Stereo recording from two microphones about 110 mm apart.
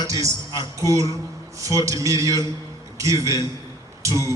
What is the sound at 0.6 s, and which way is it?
A man's voice, 30° right (ahead or behind).